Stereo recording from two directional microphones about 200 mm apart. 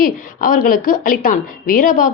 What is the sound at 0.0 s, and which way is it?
A woman's voice, 45° left (ahead or behind).